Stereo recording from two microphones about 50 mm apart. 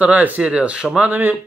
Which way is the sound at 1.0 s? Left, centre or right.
Right.